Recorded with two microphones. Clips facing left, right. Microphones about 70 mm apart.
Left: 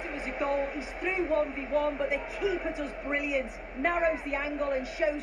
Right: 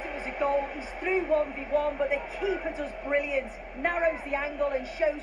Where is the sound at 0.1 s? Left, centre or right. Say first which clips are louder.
Right 3 dB; right.